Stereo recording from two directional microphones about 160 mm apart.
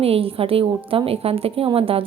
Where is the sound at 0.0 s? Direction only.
35° right (ahead or behind).